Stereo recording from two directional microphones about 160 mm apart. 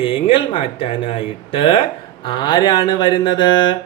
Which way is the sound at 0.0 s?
35° left (ahead or behind).